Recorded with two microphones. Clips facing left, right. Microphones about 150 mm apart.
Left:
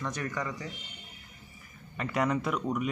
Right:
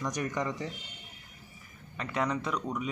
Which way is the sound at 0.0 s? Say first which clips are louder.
Right 2 dB; 15° right (ahead or behind).